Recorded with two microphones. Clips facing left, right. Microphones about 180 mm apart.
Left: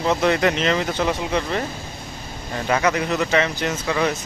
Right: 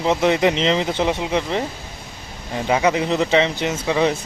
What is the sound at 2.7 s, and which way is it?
Speech, 15° right (ahead or behind).